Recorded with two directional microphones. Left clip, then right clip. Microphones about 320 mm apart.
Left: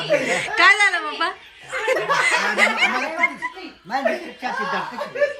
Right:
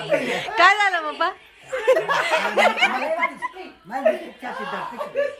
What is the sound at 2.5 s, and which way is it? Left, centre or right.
Snicker, centre.